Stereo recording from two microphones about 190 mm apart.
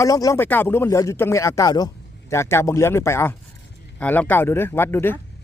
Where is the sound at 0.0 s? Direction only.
15° left (ahead or behind).